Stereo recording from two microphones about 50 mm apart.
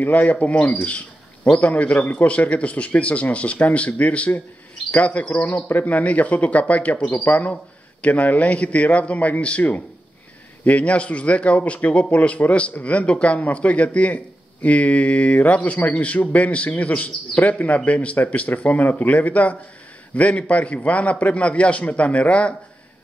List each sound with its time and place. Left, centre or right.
0.0 s a man's voice: left